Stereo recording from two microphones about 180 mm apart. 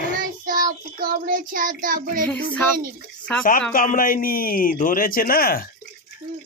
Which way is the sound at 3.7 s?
50° left (ahead or behind).